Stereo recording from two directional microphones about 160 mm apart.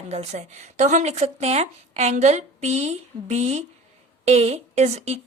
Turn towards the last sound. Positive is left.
turn(degrees=-40)  # may be behind; listen again after turning